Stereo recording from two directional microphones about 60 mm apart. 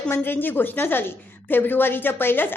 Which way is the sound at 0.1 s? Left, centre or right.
Left.